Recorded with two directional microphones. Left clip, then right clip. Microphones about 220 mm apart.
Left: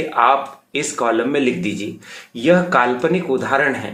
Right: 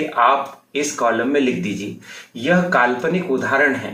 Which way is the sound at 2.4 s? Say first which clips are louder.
Left 2 dB; 50° left (ahead or behind).